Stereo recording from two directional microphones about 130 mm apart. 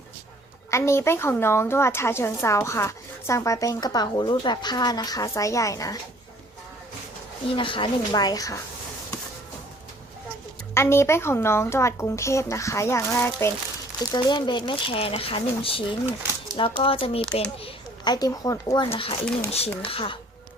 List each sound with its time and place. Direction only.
0.7 s a woman's voice: 20° left (ahead or behind)
7.5 s speech: 40° left (ahead or behind)
10.8 s a woman's voice: 20° left (ahead or behind)
14.0 s speech: 35° left (ahead or behind)
18.0 s a woman's voice: 30° left (ahead or behind)
19.5 s speech: 50° left (ahead or behind)